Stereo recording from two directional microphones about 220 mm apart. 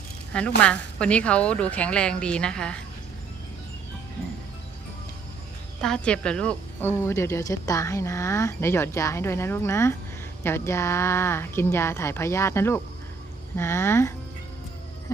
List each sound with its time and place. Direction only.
0.3 s speech: 5° left (ahead or behind)
5.8 s speech: 5° left (ahead or behind)